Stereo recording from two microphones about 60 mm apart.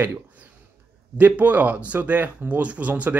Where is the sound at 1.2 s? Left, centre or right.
Right.